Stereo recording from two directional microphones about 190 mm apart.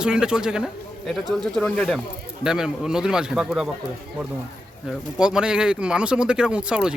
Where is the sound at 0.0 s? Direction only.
5° right (ahead or behind).